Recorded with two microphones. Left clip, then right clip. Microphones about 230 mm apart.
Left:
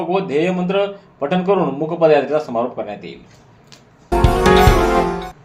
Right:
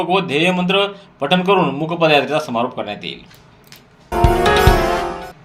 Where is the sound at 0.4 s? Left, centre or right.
Right.